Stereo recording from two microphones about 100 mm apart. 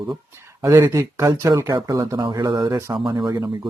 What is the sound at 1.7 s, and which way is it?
Speech, 45° right (ahead or behind).